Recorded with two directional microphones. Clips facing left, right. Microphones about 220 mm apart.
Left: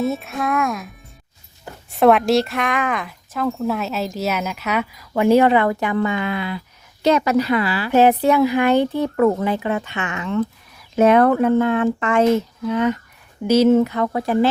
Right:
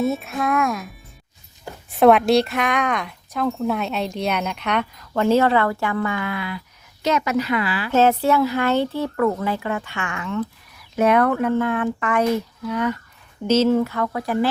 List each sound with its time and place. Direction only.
0.0 s speech: centre (ahead or behind)
1.9 s speech: centre (ahead or behind); by 7.9 s 35° left (ahead or behind)
7.9 s speech: 15° left (ahead or behind)